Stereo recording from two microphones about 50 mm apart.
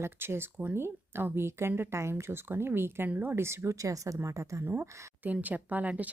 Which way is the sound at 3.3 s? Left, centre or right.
Right.